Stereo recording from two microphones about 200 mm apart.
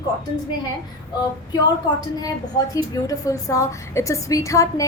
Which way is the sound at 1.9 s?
20° left (ahead or behind).